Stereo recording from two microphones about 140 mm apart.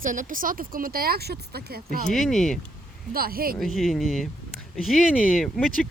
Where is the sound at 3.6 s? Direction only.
Centre (ahead or behind).